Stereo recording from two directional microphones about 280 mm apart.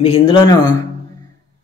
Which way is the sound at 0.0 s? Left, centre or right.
Centre.